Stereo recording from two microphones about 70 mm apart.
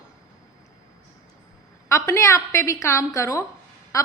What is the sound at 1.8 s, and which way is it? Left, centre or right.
A woman's voice, left.